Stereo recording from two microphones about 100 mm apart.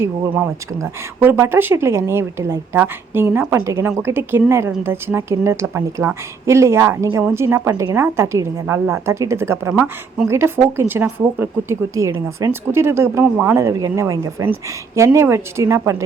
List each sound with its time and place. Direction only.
0.0 s a woman's voice: 25° right (ahead or behind)
13.2 s speech: 15° right (ahead or behind)
13.5 s a woman's voice: 30° right (ahead or behind)